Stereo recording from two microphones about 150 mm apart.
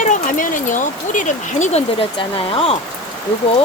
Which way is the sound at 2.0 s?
40° left (ahead or behind).